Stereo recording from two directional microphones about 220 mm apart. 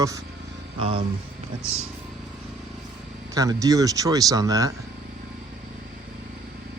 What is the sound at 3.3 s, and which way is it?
Speech, 15° right (ahead or behind).